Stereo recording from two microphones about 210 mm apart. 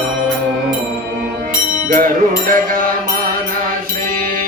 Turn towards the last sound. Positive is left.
turn(degrees=-40)  # may be behind; listen again after turning